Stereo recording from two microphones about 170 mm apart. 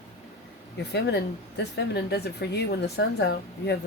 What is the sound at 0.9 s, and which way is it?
A woman's voice, 80° left.